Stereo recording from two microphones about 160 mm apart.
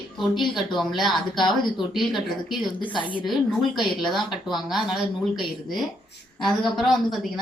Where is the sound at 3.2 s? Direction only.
Centre (ahead or behind).